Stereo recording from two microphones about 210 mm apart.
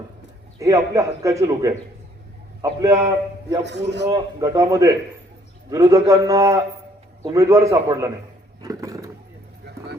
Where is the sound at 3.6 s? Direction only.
55° right (ahead or behind).